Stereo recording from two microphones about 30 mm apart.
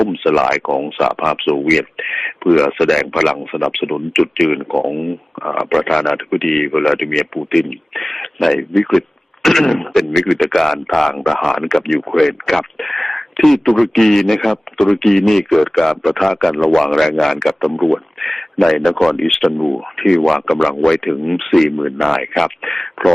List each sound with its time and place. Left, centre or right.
0.0 s speech: centre